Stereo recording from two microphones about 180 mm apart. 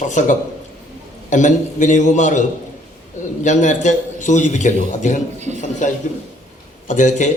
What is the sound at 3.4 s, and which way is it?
A man's voice, 45° left (ahead or behind).